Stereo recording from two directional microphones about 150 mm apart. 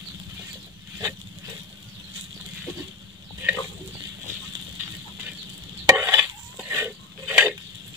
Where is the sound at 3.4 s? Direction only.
15° right (ahead or behind).